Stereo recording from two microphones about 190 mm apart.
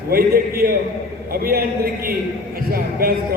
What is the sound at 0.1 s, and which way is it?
A man's voice, 50° right (ahead or behind).